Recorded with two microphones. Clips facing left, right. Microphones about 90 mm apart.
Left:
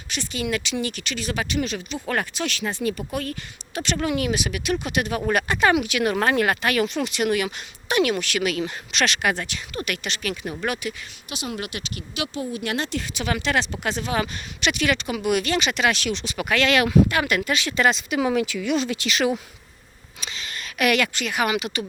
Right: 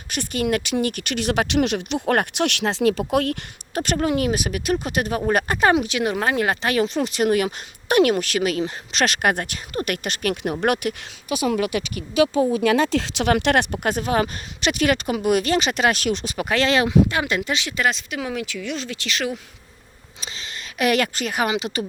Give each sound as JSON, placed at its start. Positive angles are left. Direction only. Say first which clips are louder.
{"t": 0.1, "sound": "speech", "louder": "right 4 dB", "side_deg": -55}
{"t": 3.8, "sound": "speech", "louder": "right 3 dB", "side_deg": -40}
{"t": 6.1, "sound": "speech", "louder": "left 2 dB", "side_deg": -10}
{"t": 6.4, "sound": "speech", "louder": "right 1 dB", "side_deg": -25}
{"t": 10.4, "sound": "speech", "louder": "right 8 dB", "side_deg": -60}
{"t": 13.0, "sound": "speech", "louder": "right 7 dB", "side_deg": -70}
{"t": 13.8, "sound": "speech", "louder": "right 4 dB", "side_deg": -45}
{"t": 17.7, "sound": "speech", "louder": "left 5 dB", "side_deg": -5}
{"t": 20.2, "sound": "speech", "louder": "left 1 dB", "side_deg": -30}